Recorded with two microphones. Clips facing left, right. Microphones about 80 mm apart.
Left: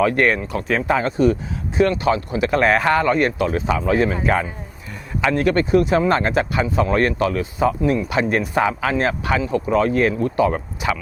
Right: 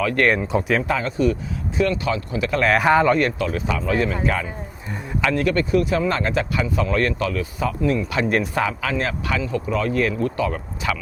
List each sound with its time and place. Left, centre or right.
0.5 s speech: centre
0.9 s speech: left
2.7 s speech: centre
3.2 s speech: left